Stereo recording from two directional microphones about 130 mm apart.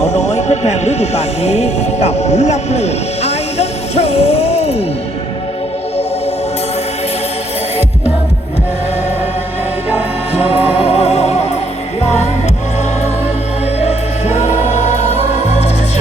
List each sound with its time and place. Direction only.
0.0 s speech: 55° left (ahead or behind)
10.3 s music: 50° left (ahead or behind)
13.8 s music: 55° left (ahead or behind)